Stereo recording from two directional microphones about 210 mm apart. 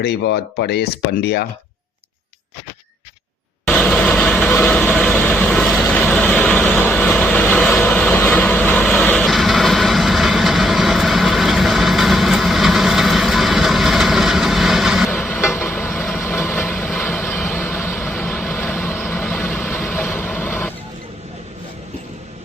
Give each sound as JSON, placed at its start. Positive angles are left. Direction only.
{"t": 0.0, "sound": "speech", "side_deg": 55}
{"t": 3.7, "sound": "vehicle", "side_deg": 5}
{"t": 15.1, "sound": "vehicle", "side_deg": 10}